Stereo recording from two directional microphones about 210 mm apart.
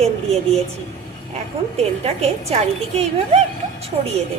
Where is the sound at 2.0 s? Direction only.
30° right (ahead or behind).